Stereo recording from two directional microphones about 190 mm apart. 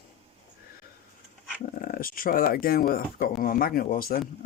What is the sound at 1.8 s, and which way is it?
Speech, 50° left (ahead or behind).